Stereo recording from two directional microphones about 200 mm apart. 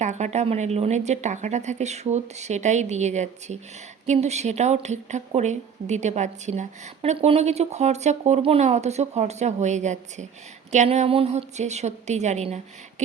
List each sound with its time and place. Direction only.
0.0 s speech: 35° right (ahead or behind)